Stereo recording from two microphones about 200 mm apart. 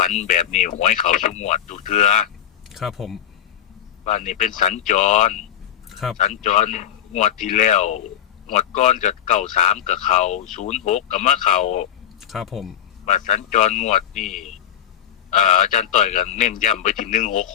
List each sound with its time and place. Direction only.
0.0 s speech: 35° left (ahead or behind)
2.6 s speech: centre (ahead or behind)
4.0 s speech: 35° left (ahead or behind)
5.9 s a sound: centre (ahead or behind)
6.1 s speech: 35° left (ahead or behind)
12.2 s speech: centre (ahead or behind)
13.1 s speech: 35° left (ahead or behind)
15.3 s speech: 35° left (ahead or behind)